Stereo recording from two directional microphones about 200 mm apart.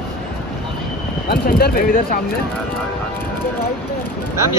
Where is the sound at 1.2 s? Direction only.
50° left (ahead or behind).